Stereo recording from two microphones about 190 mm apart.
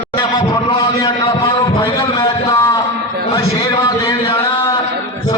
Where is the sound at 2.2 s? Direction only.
15° left (ahead or behind).